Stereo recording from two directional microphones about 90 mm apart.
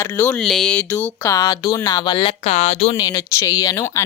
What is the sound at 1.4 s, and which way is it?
Speech, 45° left (ahead or behind).